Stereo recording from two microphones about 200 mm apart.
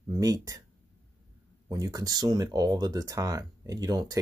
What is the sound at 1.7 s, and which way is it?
Speech, 20° right (ahead or behind).